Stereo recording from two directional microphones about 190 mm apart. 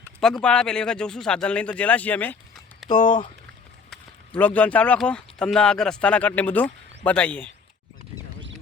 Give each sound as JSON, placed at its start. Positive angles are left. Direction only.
{"t": 0.2, "sound": "a man's voice", "side_deg": 5}
{"t": 4.4, "sound": "speech", "side_deg": 10}